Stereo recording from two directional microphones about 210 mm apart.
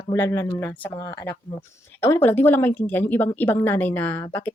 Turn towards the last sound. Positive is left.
turn(degrees=10)  # may be behind; listen again after turning